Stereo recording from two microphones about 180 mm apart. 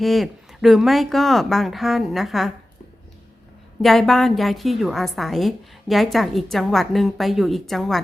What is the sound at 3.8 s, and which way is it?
A woman's voice, centre (ahead or behind).